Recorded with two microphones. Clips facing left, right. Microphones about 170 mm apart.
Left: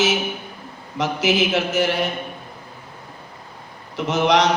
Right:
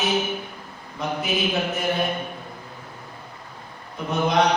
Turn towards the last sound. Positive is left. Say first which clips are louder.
# left 3 dB
turn(degrees=90)